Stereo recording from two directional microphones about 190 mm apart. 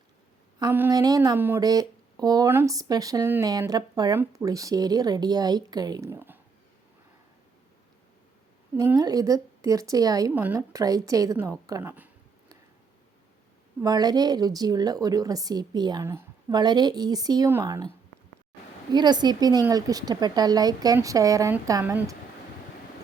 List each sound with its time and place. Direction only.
0.6 s speech: 15° right (ahead or behind)
8.7 s a woman's voice: 10° right (ahead or behind)
13.8 s speech: 20° right (ahead or behind)
18.9 s speech: 20° right (ahead or behind)